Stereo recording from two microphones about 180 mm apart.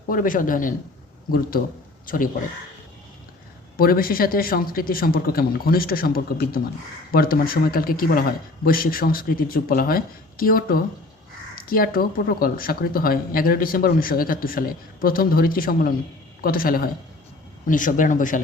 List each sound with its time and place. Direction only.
0.1 s speech: 50° left (ahead or behind)
3.8 s speech: 55° left (ahead or behind)